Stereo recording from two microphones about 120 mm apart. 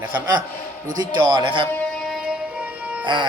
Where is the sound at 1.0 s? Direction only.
40° right (ahead or behind).